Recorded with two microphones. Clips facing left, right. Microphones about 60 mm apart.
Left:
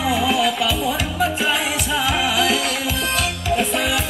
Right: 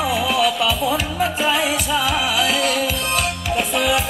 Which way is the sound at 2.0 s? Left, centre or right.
Right.